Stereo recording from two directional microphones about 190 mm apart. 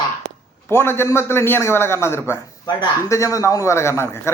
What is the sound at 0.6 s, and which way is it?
A man's voice, 10° left (ahead or behind).